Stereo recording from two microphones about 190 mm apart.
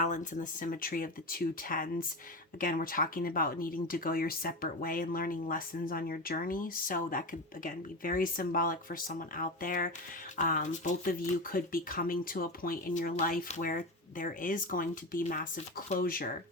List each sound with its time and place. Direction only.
0.0 s speech: 40° left (ahead or behind)